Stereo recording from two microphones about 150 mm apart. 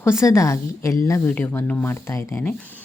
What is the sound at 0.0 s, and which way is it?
A woman's voice, 20° left (ahead or behind).